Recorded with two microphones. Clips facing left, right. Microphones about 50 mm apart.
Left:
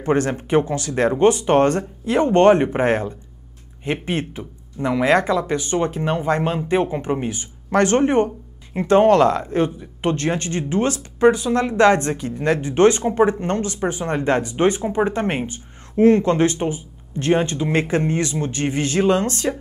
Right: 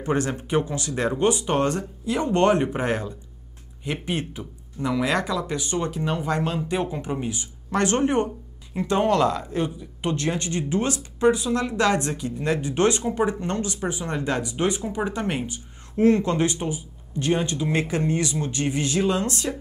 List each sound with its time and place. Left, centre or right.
0.0 s speech: left